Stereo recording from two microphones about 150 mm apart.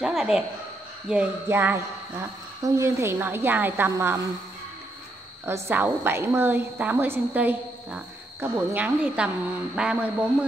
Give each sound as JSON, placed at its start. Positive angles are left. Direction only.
{"t": 0.0, "sound": "a sound", "side_deg": -5}
{"t": 1.0, "sound": "a woman's voice", "side_deg": -10}
{"t": 5.4, "sound": "a woman's voice", "side_deg": -15}